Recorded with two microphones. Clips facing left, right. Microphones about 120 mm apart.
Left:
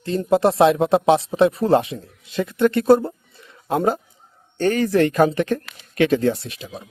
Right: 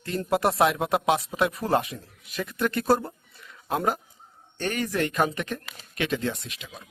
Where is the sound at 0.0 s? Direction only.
25° left (ahead or behind).